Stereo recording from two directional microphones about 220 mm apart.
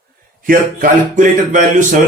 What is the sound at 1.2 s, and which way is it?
Speech, 35° right (ahead or behind).